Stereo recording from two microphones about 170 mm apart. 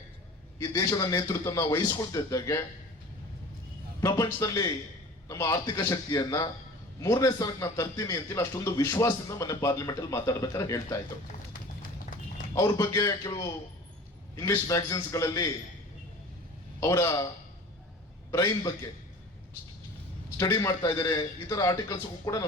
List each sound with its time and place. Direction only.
0.6 s a man's voice: 20° left (ahead or behind)
4.0 s a man's voice: 20° left (ahead or behind)
12.5 s a man's voice: 20° left (ahead or behind)
16.8 s a man's voice: 15° left (ahead or behind)
18.3 s a man's voice: 20° left (ahead or behind)
20.3 s a man's voice: 20° left (ahead or behind)